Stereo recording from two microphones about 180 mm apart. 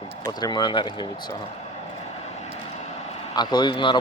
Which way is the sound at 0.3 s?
25° left (ahead or behind).